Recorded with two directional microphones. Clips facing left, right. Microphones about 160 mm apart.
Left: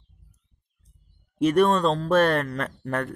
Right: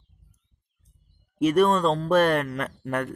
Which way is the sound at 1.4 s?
10° right (ahead or behind).